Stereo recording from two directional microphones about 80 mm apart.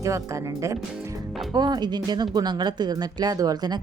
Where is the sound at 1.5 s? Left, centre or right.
Right.